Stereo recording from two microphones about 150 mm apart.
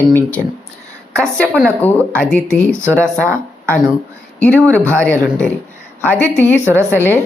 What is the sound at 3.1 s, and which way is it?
Speech, 15° right (ahead or behind).